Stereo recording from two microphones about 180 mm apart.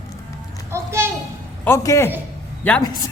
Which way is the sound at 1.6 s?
15° left (ahead or behind).